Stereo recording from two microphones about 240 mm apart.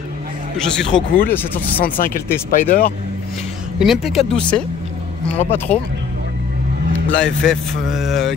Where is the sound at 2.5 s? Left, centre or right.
Left.